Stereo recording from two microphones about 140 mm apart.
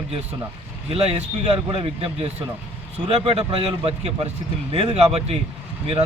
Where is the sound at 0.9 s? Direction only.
50° right (ahead or behind).